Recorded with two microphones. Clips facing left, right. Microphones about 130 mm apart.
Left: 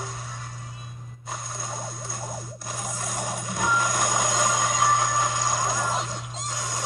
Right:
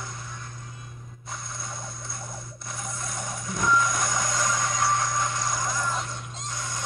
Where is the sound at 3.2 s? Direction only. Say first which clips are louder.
Left 1 dB; 65° left (ahead or behind).